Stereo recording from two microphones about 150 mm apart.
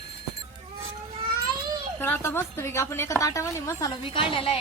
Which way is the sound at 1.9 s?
15° left (ahead or behind).